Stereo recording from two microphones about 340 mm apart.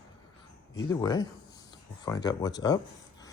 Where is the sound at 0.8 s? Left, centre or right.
Centre.